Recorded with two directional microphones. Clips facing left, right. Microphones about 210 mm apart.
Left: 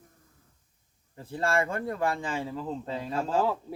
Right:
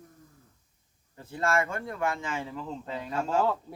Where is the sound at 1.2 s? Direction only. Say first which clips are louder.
Left 1 dB; 30° left (ahead or behind).